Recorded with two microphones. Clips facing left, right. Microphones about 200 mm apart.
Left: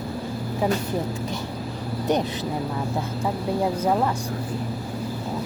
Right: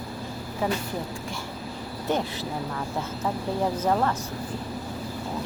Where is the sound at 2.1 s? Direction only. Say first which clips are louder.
Left 3 dB; 20° left (ahead or behind).